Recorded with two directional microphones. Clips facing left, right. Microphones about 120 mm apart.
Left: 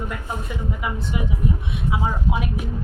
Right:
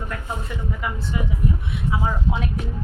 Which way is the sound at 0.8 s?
15° left (ahead or behind).